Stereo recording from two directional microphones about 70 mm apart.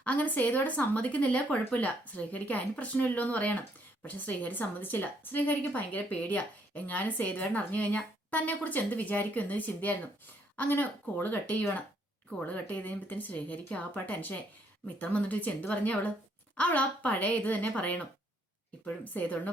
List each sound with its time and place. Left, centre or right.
0.0 s a woman's voice: left